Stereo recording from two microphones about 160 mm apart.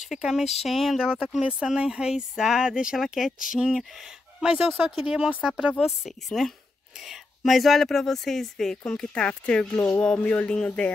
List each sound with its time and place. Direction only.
0.1 s speech: 5° right (ahead or behind)